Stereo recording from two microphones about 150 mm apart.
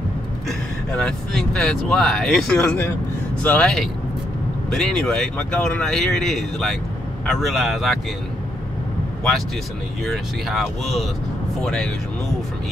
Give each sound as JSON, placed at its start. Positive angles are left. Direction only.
{"t": 0.5, "sound": "speech", "side_deg": 5}
{"t": 10.0, "sound": "speech", "side_deg": 0}